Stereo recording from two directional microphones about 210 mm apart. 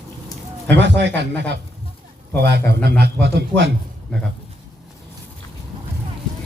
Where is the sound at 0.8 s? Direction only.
55° right (ahead or behind).